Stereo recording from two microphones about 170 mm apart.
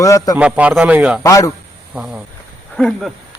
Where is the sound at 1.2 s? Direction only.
20° left (ahead or behind).